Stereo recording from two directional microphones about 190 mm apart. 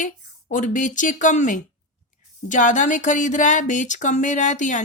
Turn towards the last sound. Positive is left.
turn(degrees=40)  # may be behind; listen again after turning